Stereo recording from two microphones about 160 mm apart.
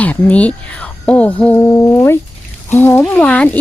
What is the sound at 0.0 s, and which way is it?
Speech, 10° left (ahead or behind).